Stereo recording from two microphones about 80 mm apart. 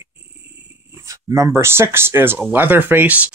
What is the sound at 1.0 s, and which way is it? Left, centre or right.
Speech, right.